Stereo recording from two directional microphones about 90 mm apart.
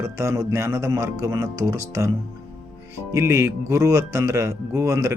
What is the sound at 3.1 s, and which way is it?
Speech, 30° right (ahead or behind).